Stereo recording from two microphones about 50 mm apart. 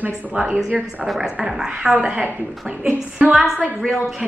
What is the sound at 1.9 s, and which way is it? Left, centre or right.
Speech, right.